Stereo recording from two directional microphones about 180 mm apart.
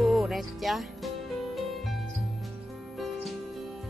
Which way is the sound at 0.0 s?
Centre (ahead or behind).